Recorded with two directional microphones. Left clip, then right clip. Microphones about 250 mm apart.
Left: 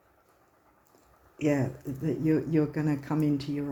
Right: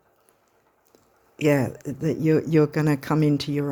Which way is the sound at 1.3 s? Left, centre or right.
Right.